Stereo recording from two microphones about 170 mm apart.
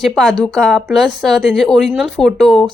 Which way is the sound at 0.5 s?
Centre (ahead or behind).